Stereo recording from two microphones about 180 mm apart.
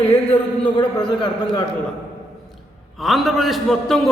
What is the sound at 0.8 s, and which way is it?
Speech, 25° left (ahead or behind).